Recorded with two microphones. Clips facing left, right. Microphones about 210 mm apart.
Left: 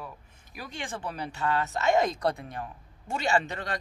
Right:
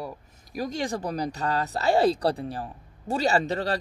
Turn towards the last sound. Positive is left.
turn(degrees=-35)  # may be behind; listen again after turning